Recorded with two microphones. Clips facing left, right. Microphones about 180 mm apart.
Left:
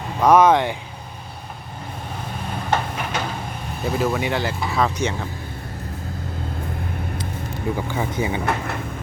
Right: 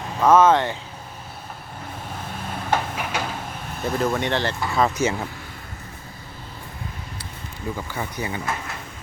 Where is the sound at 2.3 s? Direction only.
5° right (ahead or behind).